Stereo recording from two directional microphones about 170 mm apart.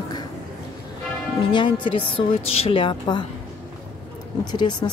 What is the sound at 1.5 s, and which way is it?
A woman's voice, 30° left (ahead or behind).